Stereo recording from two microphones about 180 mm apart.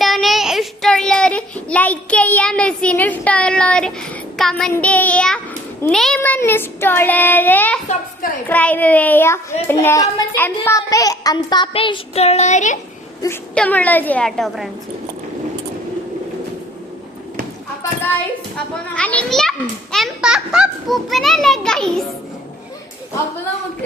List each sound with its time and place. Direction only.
0.0 s child singing: centre (ahead or behind)
4.4 s a child's voice: centre (ahead or behind)
4.7 s child singing: 10° left (ahead or behind); by 12.8 s 40° left (ahead or behind)
13.2 s child singing: 10° left (ahead or behind)
18.9 s a child's voice: 5° left (ahead or behind)